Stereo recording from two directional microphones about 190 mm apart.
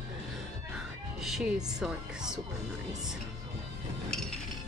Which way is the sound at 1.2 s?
Centre (ahead or behind).